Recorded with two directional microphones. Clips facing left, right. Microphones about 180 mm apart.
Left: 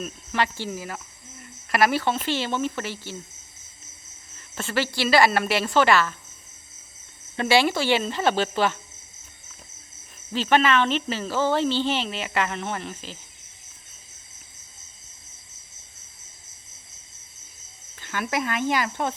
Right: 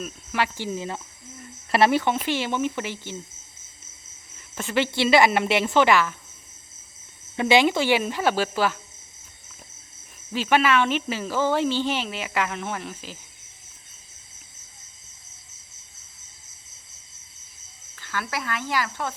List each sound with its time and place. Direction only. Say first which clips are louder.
0.0 s speech: left 1 dB; 5° right (ahead or behind); by 2.0 s 30° right (ahead or behind)
2.2 s speech: right 1 dB; 15° right (ahead or behind)
4.4 s speech: right 2 dB; 15° right (ahead or behind)
7.3 s speech: right 2 dB; 15° right (ahead or behind)
10.3 s speech: even; 10° right (ahead or behind)
18.0 s speech: left 4 dB; 20° left (ahead or behind)